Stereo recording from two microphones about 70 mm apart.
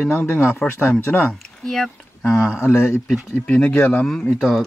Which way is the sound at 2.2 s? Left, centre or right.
Centre.